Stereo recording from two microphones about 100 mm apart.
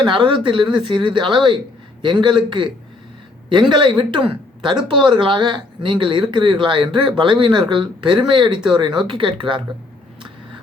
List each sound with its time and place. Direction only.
0.0 s speech: 55° right (ahead or behind)